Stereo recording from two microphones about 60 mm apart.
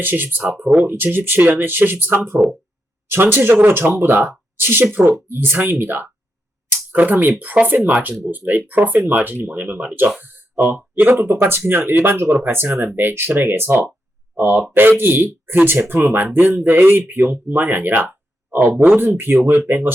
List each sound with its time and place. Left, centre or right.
0.0 s speech: right
11.1 s speech: right